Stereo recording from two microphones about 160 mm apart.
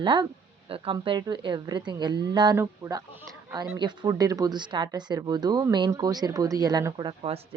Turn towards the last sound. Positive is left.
turn(degrees=-25)  # may be behind; listen again after turning